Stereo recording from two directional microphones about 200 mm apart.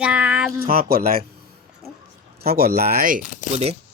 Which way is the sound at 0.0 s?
5° right (ahead or behind).